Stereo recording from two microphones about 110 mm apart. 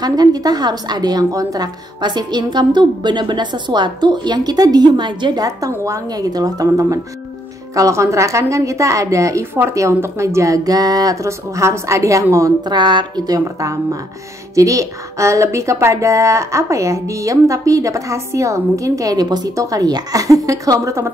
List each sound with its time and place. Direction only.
0.0 s a woman's voice: 35° right (ahead or behind)
12.6 s a woman's voice: 45° right (ahead or behind)
13.4 s speech: 30° right (ahead or behind)